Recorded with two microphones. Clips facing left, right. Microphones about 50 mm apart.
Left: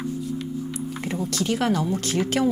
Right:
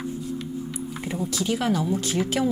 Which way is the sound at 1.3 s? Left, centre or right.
Left.